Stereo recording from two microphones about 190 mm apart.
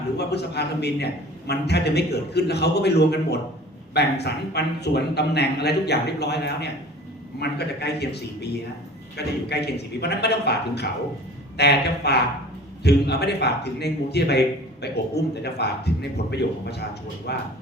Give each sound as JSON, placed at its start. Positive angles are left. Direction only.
{"t": 0.2, "sound": "a man's voice", "side_deg": 60}